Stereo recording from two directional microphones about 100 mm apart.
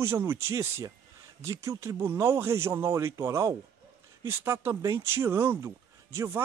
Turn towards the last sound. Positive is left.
turn(degrees=-30)  # may be behind; listen again after turning